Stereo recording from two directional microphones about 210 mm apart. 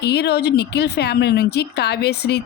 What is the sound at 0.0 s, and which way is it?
Speech, 55° left (ahead or behind).